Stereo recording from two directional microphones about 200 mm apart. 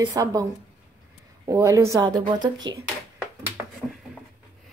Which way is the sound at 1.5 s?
15° right (ahead or behind).